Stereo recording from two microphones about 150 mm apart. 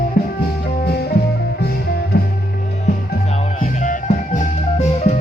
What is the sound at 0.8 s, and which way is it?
Music, 90° left.